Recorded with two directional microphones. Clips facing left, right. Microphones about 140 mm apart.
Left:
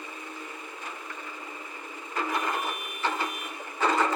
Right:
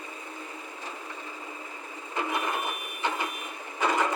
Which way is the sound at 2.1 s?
20° right (ahead or behind).